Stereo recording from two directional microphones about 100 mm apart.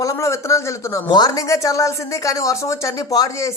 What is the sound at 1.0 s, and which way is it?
Speech, 45° left (ahead or behind).